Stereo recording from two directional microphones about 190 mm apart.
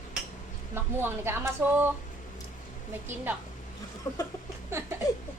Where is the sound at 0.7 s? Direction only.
10° right (ahead or behind).